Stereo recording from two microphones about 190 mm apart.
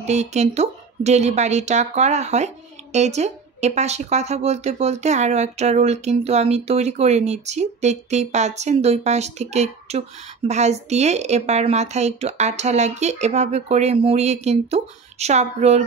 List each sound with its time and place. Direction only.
0.0 s speech: 35° right (ahead or behind)